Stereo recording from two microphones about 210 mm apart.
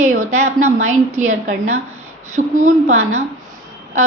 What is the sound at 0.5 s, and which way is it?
A woman's voice, 35° right (ahead or behind).